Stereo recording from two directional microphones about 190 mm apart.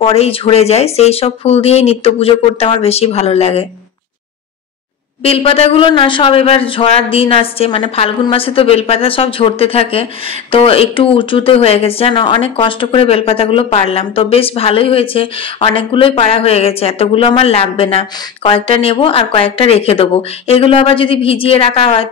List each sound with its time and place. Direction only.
0.0 s speech: 30° left (ahead or behind)
5.2 s speech: 30° left (ahead or behind)